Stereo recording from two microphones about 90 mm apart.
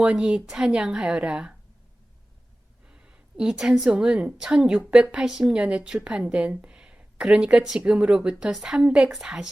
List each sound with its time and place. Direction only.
0.0 s speech: 10° right (ahead or behind)
2.9 s a woman's voice: 10° right (ahead or behind)